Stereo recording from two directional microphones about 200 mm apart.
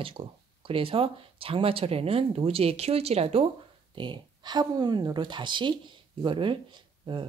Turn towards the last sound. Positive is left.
turn(degrees=-25)  # may be behind; listen again after turning